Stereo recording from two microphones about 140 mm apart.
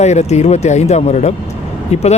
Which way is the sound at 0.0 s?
55° left (ahead or behind).